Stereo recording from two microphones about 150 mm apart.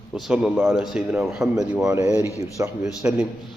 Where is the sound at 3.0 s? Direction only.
5° right (ahead or behind).